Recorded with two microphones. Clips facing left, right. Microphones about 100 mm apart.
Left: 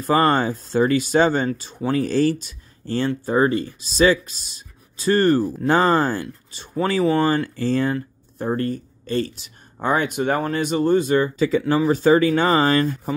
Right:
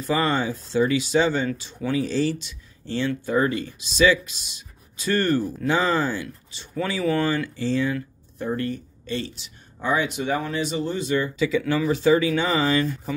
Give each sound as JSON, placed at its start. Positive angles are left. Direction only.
{"t": 0.0, "sound": "speech", "side_deg": 50}
{"t": 3.1, "sound": "speech", "side_deg": 35}
{"t": 5.8, "sound": "speech", "side_deg": 50}